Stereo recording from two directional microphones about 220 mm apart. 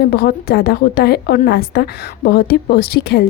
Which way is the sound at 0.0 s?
45° left (ahead or behind).